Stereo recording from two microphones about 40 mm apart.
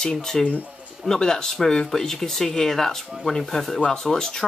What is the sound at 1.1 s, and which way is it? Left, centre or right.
Speech, centre.